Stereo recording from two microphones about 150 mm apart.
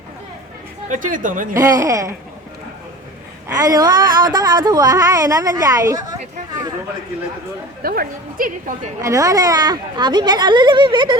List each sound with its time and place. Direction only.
0.9 s a woman's voice: 60° right (ahead or behind)
1.5 s a woman's voice: 20° right (ahead or behind)
3.5 s a woman's voice: 25° right (ahead or behind)
7.8 s a woman's voice: 80° right
9.0 s a woman's voice: 20° right (ahead or behind)